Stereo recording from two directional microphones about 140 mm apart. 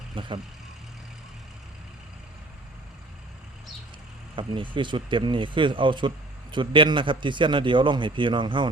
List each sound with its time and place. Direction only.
0.1 s speech: 35° right (ahead or behind)
4.4 s speech: 35° right (ahead or behind)